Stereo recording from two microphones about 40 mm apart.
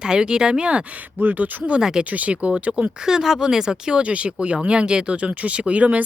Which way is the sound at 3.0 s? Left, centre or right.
Centre.